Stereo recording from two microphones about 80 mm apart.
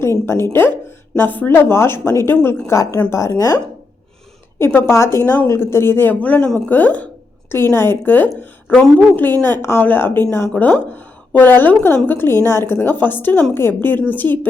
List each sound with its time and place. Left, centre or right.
0.0 s a woman's voice: left
1.1 s a woman's voice: left
4.5 s a woman's voice: left
7.5 s a woman's voice: left